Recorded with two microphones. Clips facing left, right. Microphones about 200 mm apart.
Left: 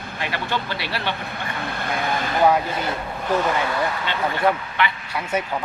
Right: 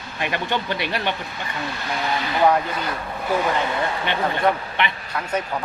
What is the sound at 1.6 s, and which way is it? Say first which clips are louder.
Speech: left 1 dB; 55° left (ahead or behind).